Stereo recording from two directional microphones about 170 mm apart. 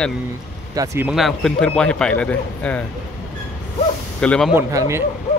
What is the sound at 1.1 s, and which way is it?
A man's voice, centre (ahead or behind).